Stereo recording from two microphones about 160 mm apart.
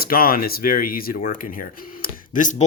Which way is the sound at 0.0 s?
65° left (ahead or behind).